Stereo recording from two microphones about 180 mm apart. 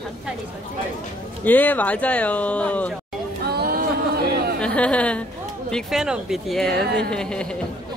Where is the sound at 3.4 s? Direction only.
60° right (ahead or behind).